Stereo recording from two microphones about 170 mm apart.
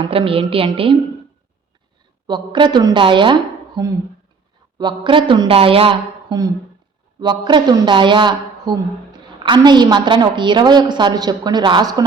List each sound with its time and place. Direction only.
0.0 s a woman's voice: 30° right (ahead or behind)
2.2 s a woman's voice: 25° right (ahead or behind)
4.8 s a woman's voice: 25° right (ahead or behind)